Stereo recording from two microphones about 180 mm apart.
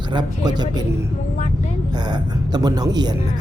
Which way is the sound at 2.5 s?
20° right (ahead or behind).